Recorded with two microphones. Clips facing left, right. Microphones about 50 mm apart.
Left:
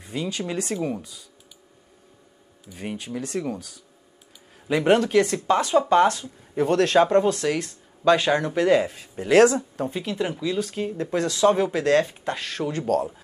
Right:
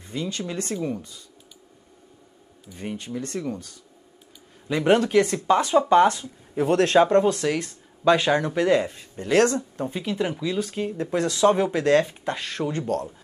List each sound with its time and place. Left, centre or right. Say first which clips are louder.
0.0 s speech: left 1 dB; centre
2.7 s speech: even; centre
8.5 s speech: left 1 dB; centre
12.4 s speech: even; right
12.6 s speech: left 3 dB; centre